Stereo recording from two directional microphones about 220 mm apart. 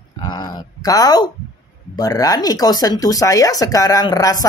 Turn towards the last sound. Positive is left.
turn(degrees=15)  # may be behind; listen again after turning